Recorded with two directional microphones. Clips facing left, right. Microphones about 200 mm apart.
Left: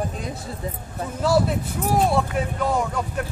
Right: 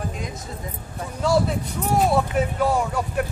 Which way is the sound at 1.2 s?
Centre (ahead or behind).